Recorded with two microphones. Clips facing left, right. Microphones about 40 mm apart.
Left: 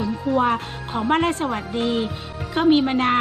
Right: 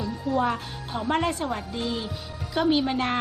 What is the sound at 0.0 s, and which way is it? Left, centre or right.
A woman's voice, left.